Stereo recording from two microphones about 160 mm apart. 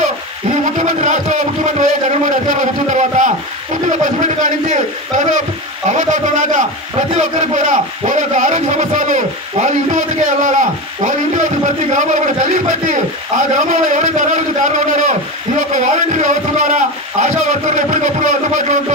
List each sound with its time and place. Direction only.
0.7 s speech: 50° right (ahead or behind)
11.9 s speech: 50° right (ahead or behind)
13.6 s a sound: 50° right (ahead or behind)